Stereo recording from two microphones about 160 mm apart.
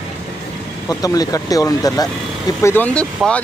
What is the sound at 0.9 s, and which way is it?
Speech, 20° left (ahead or behind).